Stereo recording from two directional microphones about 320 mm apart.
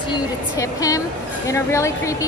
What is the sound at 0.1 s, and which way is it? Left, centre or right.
Speech, centre.